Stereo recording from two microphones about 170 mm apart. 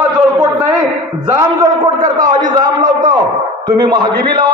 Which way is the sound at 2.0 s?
25° right (ahead or behind).